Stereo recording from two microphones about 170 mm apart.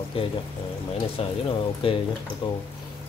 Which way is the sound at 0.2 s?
35° left (ahead or behind).